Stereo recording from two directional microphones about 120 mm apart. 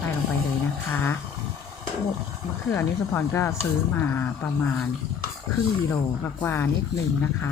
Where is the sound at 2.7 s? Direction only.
20° left (ahead or behind).